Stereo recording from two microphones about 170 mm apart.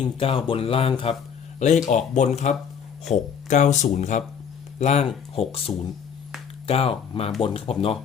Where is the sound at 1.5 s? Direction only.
45° left (ahead or behind).